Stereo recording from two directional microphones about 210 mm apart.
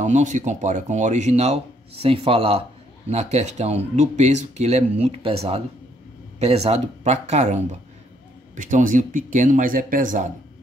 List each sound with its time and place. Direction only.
0.0 s speech: 35° right (ahead or behind)